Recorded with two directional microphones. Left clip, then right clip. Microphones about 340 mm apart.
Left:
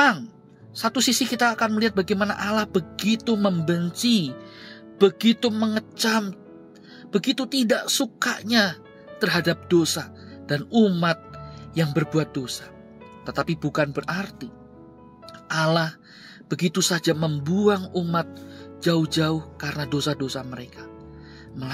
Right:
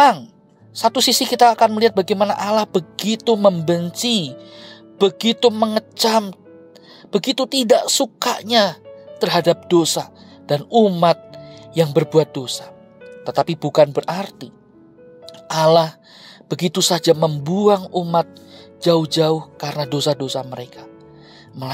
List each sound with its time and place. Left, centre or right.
0.0 s a woman's voice: centre